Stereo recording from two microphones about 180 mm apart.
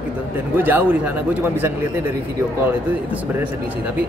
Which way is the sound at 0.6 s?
10° right (ahead or behind).